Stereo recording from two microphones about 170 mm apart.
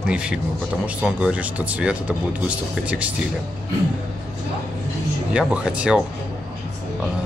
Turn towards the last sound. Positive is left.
turn(degrees=-5)  # may be behind; listen again after turning